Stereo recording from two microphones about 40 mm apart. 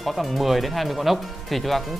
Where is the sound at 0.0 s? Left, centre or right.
Centre.